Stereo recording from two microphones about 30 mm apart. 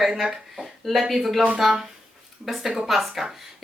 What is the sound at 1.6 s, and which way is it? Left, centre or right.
Speech, centre.